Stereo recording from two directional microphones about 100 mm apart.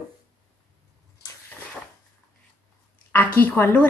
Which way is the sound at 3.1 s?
15° left (ahead or behind).